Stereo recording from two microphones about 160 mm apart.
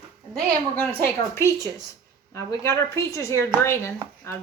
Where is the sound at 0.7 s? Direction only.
10° left (ahead or behind).